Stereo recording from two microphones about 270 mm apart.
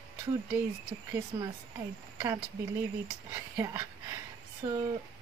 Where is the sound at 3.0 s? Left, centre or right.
Centre.